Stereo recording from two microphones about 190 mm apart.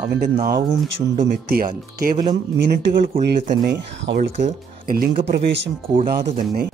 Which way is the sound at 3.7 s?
60° right (ahead or behind).